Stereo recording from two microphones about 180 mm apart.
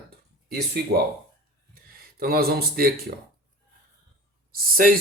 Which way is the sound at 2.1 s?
55° right (ahead or behind).